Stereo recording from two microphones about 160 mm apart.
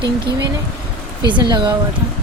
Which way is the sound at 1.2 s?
30° right (ahead or behind).